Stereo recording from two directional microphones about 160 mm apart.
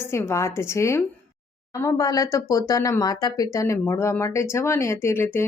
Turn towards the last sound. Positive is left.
turn(degrees=15)  # may be behind; listen again after turning